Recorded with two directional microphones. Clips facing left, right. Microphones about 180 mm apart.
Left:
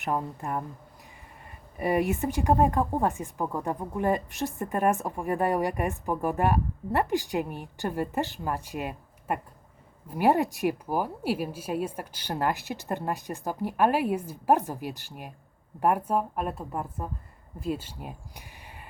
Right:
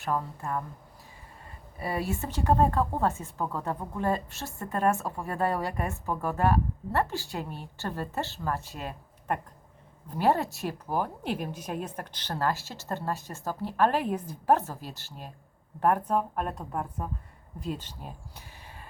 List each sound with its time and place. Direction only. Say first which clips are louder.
0.0 s a woman's voice: left 1 dB; 20° left (ahead or behind)
1.8 s speech: left 6 dB; 15° left (ahead or behind)